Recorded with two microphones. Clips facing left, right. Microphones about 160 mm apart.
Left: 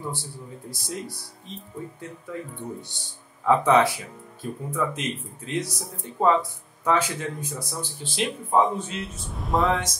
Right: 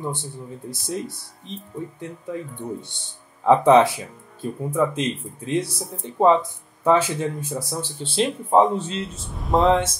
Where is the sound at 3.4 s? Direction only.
25° right (ahead or behind).